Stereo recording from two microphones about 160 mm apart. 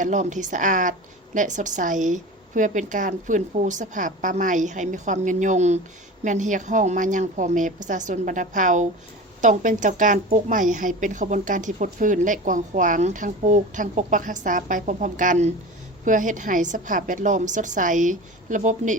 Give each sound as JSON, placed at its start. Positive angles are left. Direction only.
{"t": 0.0, "sound": "a woman's voice", "side_deg": -50}